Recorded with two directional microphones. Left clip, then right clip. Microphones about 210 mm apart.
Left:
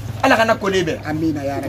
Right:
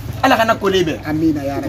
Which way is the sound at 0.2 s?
15° left (ahead or behind).